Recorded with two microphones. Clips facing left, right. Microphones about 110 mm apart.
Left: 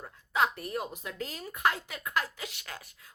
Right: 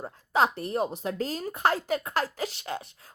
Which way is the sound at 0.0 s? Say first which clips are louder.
Right 4 dB; 30° right (ahead or behind).